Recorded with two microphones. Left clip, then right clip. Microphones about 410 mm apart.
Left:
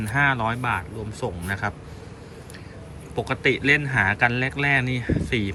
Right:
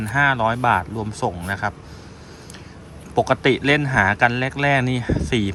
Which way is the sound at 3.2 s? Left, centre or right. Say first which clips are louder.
Right 5 dB; centre.